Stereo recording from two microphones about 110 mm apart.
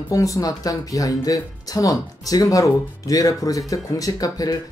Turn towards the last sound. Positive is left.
turn(degrees=35)  # may be behind; listen again after turning